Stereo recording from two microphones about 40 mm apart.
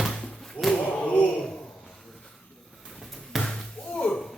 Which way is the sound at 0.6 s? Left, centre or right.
Centre.